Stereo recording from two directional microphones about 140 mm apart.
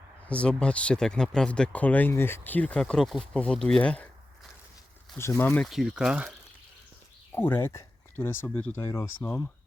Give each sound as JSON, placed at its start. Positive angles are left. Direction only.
{"t": 0.3, "sound": "speech", "side_deg": 10}
{"t": 5.1, "sound": "speech", "side_deg": 15}
{"t": 5.6, "sound": "speech", "side_deg": 0}
{"t": 7.3, "sound": "speech", "side_deg": 15}